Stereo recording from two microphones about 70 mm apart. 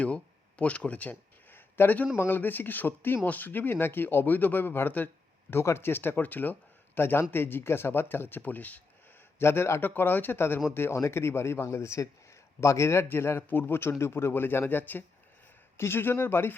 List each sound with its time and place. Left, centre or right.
0.0 s a sound: centre
2.1 s speech: left
9.4 s speech: left